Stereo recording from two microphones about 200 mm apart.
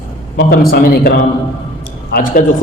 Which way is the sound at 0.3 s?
45° left (ahead or behind).